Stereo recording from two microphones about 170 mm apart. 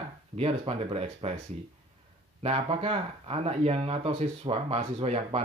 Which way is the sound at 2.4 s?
35° right (ahead or behind).